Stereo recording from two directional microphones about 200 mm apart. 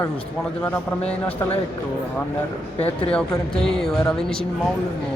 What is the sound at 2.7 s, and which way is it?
Speech, 30° left (ahead or behind).